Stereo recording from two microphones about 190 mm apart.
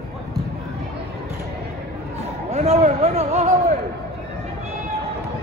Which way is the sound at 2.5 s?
35° right (ahead or behind).